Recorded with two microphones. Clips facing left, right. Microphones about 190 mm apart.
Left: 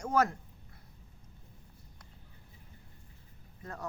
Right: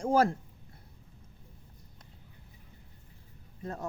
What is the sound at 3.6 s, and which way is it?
Speech, 25° right (ahead or behind).